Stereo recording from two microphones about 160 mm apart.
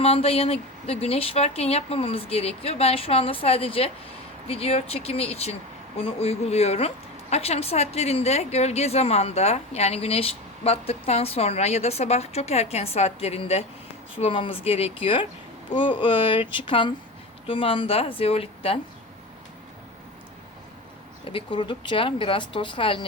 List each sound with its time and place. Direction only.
0.0 s speech: 40° left (ahead or behind)
21.2 s speech: 30° left (ahead or behind)